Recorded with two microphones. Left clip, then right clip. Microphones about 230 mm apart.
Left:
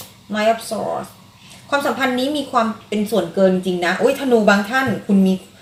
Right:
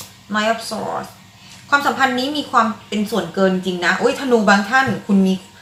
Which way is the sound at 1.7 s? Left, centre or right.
Centre.